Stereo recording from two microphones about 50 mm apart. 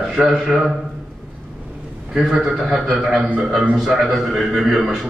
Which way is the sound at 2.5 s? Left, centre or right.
Centre.